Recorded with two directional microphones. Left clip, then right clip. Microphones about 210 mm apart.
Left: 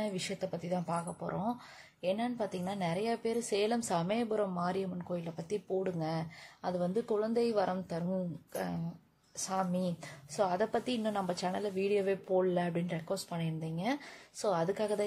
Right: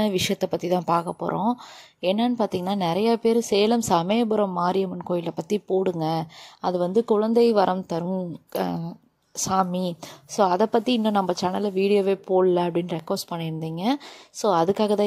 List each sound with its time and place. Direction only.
0.0 s speech: 40° right (ahead or behind)